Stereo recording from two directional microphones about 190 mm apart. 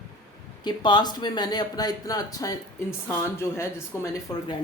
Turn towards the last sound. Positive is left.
turn(degrees=15)  # may be behind; listen again after turning